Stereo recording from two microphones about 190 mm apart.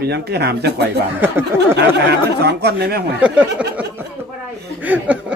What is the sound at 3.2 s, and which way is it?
Speech, 5° right (ahead or behind).